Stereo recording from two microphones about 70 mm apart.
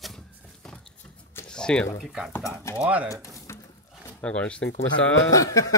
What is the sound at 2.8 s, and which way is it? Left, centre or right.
Speech, centre.